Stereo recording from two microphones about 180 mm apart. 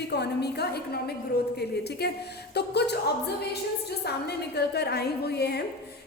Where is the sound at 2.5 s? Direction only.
65° left (ahead or behind).